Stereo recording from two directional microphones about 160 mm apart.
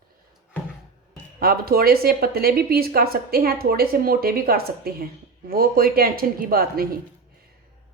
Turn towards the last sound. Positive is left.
turn(degrees=-65)  # may be behind; listen again after turning